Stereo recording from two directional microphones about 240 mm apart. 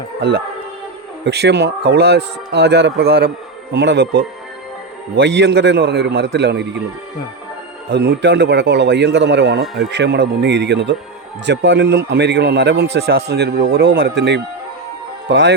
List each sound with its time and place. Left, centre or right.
0.2 s speech: right
7.9 s speech: right